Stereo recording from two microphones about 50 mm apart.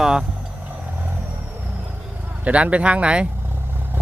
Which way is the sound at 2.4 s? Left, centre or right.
Right.